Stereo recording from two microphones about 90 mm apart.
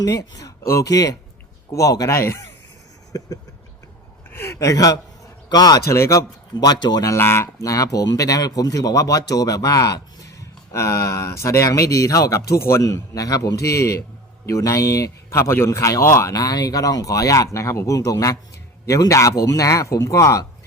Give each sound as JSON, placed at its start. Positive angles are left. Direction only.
{"t": 0.0, "sound": "speech", "side_deg": 45}
{"t": 3.1, "sound": "a sound", "side_deg": 40}
{"t": 4.3, "sound": "a man's voice", "side_deg": 25}
{"t": 5.9, "sound": "speech", "side_deg": 35}
{"t": 7.1, "sound": "speech", "side_deg": 30}
{"t": 7.6, "sound": "speech", "side_deg": 40}